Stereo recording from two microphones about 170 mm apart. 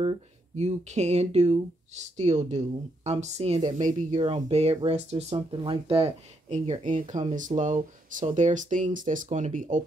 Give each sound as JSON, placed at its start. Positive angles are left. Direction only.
{"t": 0.0, "sound": "speech", "side_deg": -35}